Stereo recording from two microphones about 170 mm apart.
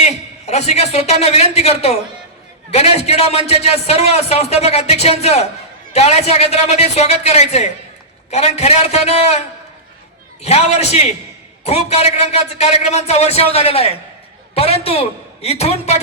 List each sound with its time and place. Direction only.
0.0 s a man's voice: 40° left (ahead or behind)
10.4 s a man's voice: 40° left (ahead or behind)